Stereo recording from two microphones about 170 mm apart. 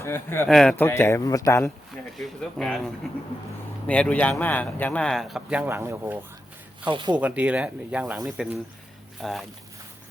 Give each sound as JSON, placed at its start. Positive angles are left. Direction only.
{"t": 0.0, "sound": "a man's voice", "side_deg": 15}
{"t": 0.4, "sound": "speech", "side_deg": 5}
{"t": 0.9, "sound": "a man's voice", "side_deg": 15}
{"t": 2.1, "sound": "speech", "side_deg": 0}
{"t": 6.9, "sound": "speech", "side_deg": -25}
{"t": 7.2, "sound": "speech", "side_deg": -10}
{"t": 9.2, "sound": "speech", "side_deg": 0}